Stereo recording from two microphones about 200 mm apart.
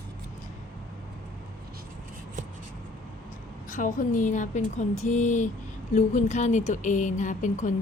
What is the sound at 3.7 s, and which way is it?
Speech, 40° left (ahead or behind).